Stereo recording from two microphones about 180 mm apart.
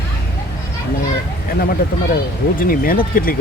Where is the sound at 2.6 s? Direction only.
50° left (ahead or behind).